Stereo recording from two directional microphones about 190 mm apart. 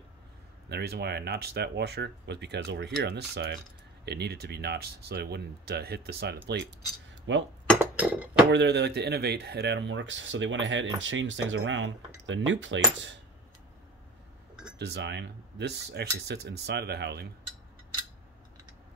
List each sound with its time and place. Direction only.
0.7 s speech: 60° right (ahead or behind)
7.3 s speech: 70° right (ahead or behind)
7.8 s a sound: 10° right (ahead or behind)
8.5 s speech: 65° right (ahead or behind)
14.8 s speech: 65° right (ahead or behind)